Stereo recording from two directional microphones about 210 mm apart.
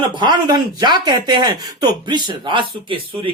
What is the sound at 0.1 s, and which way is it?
Speech, 20° right (ahead or behind).